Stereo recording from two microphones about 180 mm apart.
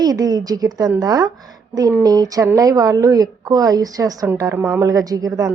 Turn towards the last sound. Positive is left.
turn(degrees=-20)  # may be behind; listen again after turning